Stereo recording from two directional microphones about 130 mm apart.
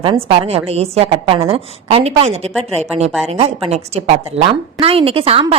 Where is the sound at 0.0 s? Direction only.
40° right (ahead or behind).